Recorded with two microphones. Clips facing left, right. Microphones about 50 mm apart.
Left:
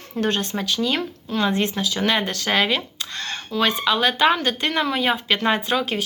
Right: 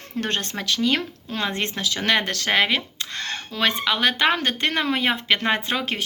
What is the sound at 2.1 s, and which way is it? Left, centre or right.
Speech, right.